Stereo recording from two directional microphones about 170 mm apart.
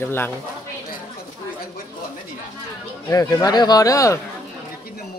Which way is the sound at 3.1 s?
20° left (ahead or behind).